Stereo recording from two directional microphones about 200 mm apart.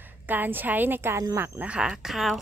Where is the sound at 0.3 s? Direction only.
10° right (ahead or behind).